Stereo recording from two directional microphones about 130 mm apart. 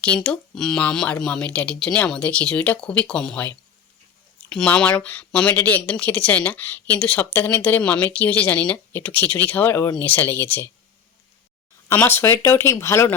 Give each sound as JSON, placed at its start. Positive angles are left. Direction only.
{"t": 0.0, "sound": "speech", "side_deg": 10}
{"t": 11.9, "sound": "speech", "side_deg": 15}